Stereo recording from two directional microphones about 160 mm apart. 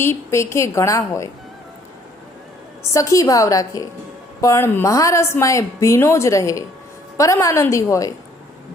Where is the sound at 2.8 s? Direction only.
20° left (ahead or behind).